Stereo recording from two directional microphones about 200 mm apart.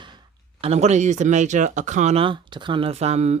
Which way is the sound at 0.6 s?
35° right (ahead or behind).